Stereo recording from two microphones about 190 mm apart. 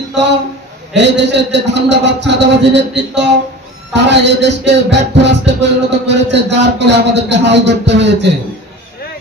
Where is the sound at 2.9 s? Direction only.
65° right (ahead or behind).